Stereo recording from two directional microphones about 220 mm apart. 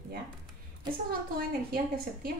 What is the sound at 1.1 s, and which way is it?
Speech, 45° right (ahead or behind).